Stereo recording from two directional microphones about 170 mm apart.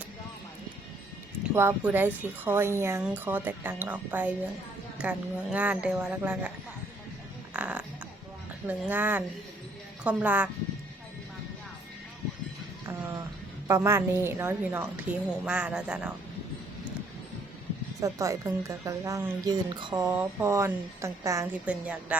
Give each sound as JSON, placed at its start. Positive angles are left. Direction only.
{"t": 1.5, "sound": "speech", "side_deg": -10}
{"t": 7.5, "sound": "music", "side_deg": -5}
{"t": 8.6, "sound": "speech", "side_deg": -10}
{"t": 12.8, "sound": "a sound", "side_deg": -15}
{"t": 13.7, "sound": "speech", "side_deg": -15}
{"t": 18.0, "sound": "speech", "side_deg": -20}